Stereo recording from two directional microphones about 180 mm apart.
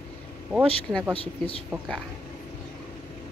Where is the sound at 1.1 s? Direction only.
30° left (ahead or behind).